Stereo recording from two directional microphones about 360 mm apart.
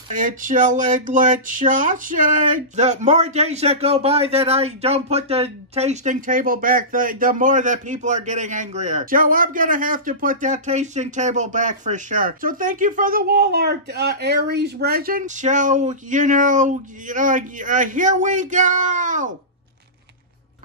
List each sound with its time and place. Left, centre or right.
0.1 s speech: right